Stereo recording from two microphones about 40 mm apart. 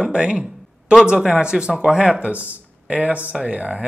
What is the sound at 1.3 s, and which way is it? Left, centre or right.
Speech, right.